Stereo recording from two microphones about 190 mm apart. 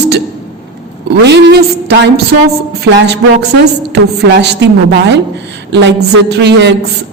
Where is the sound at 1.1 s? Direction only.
65° right (ahead or behind).